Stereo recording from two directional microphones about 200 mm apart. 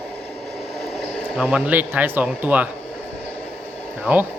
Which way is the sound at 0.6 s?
30° left (ahead or behind).